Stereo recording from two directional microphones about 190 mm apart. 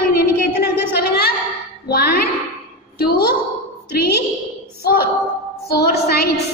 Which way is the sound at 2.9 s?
55° left (ahead or behind).